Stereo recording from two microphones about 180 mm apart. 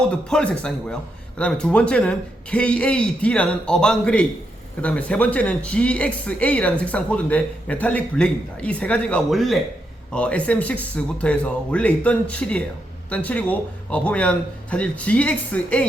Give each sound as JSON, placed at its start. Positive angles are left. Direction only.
{"t": 0.1, "sound": "a man's voice", "side_deg": 5}